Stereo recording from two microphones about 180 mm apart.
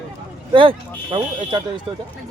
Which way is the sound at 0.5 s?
30° right (ahead or behind).